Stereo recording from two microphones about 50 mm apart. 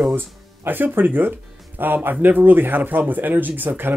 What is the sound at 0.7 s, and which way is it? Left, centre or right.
Speech, right.